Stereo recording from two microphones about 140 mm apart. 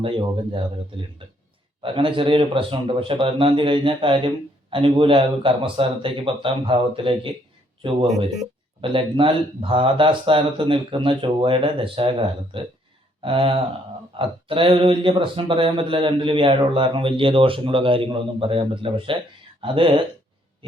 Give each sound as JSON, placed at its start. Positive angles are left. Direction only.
{"t": 0.0, "sound": "speech", "side_deg": -40}
{"t": 8.8, "sound": "speech", "side_deg": -40}